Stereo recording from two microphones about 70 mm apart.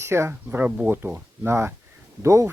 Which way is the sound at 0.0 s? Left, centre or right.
Right.